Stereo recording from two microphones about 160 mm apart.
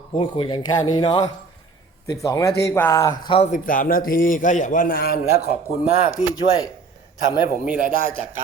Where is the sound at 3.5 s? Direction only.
60° left (ahead or behind); by 5.5 s 80° left.